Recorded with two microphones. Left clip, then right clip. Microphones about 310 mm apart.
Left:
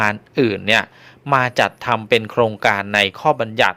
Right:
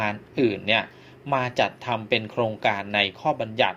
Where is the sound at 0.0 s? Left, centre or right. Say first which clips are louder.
Left 7 dB; left.